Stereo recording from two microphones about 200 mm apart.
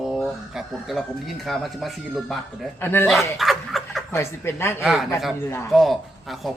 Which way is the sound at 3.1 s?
Centre (ahead or behind).